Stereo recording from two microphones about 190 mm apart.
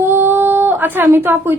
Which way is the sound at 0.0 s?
10° right (ahead or behind).